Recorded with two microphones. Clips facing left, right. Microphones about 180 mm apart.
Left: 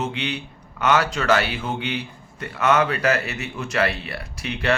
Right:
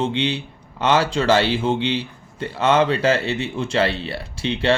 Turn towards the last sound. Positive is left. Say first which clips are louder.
# right 4 dB
turn(degrees=-30)  # may be behind; listen again after turning